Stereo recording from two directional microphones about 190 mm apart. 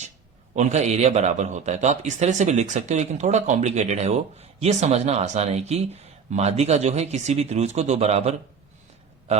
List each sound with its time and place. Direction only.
0.5 s a man's voice: 35° right (ahead or behind)